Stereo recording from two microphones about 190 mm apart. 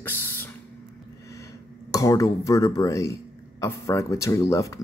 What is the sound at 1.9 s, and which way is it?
Speech, 15° left (ahead or behind).